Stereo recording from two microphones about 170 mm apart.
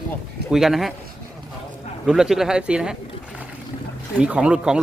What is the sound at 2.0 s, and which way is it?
Speech, 5° right (ahead or behind).